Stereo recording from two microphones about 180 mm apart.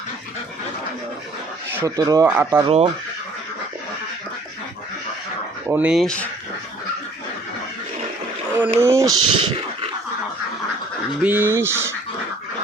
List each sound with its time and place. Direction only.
2.0 s speech: 20° right (ahead or behind)
2.2 s speech: 10° right (ahead or behind)
2.6 s speech: 30° right (ahead or behind)
5.6 s speech: 10° right (ahead or behind)
8.5 s speech: 15° right (ahead or behind)
11.2 s speech: 10° right (ahead or behind)